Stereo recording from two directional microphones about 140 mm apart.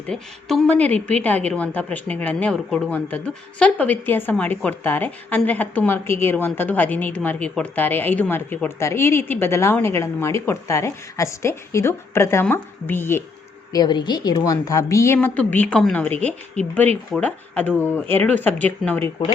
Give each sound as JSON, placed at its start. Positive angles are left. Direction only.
{"t": 0.1, "sound": "a woman's voice", "side_deg": 5}
{"t": 13.7, "sound": "a woman's voice", "side_deg": 30}